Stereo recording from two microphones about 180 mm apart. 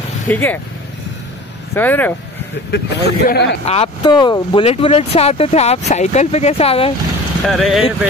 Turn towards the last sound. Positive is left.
turn(degrees=0)  # may be behind; listen again after turning